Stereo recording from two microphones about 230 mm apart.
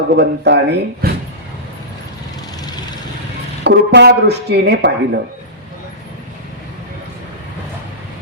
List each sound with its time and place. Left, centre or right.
0.1 s speech: right
3.6 s speech: right